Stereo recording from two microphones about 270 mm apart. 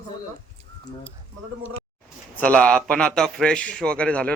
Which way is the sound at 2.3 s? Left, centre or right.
Centre.